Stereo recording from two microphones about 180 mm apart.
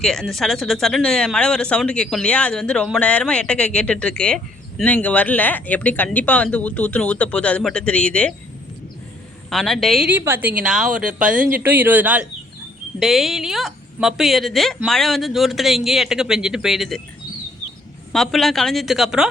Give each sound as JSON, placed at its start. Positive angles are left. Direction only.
{"t": 0.0, "sound": "speech", "side_deg": 0}
{"t": 9.5, "sound": "speech", "side_deg": 0}
{"t": 11.3, "sound": "speech", "side_deg": -50}
{"t": 11.6, "sound": "speech", "side_deg": -10}
{"t": 18.1, "sound": "speech", "side_deg": 0}